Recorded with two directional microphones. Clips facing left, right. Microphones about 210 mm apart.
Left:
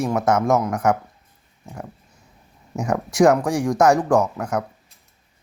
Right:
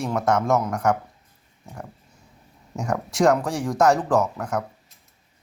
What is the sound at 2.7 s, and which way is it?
Speech, centre (ahead or behind).